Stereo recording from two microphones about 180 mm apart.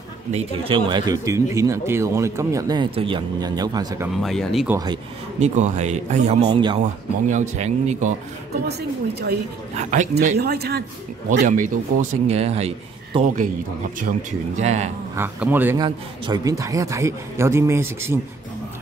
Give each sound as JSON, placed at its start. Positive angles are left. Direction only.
{"t": 0.3, "sound": "speech", "side_deg": -35}
{"t": 4.2, "sound": "speech", "side_deg": 0}
{"t": 4.6, "sound": "speech", "side_deg": -20}
{"t": 5.4, "sound": "speech", "side_deg": -40}
{"t": 6.5, "sound": "speech", "side_deg": -25}
{"t": 6.8, "sound": "speech", "side_deg": -40}
{"t": 9.8, "sound": "speech", "side_deg": -45}
{"t": 10.3, "sound": "speech", "side_deg": -60}
{"t": 11.4, "sound": "speech", "side_deg": -45}
{"t": 15.1, "sound": "speech", "side_deg": -10}
{"t": 15.8, "sound": "speech", "side_deg": -20}